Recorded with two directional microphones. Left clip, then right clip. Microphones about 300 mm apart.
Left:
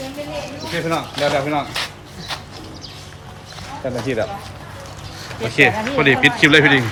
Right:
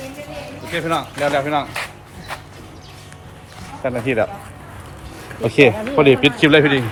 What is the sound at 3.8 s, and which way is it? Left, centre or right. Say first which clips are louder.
Speech: right 3 dB; centre.